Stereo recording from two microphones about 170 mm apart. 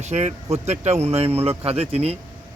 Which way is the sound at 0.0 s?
40° right (ahead or behind).